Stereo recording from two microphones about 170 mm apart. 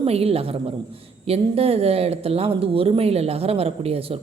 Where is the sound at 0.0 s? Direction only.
35° right (ahead or behind).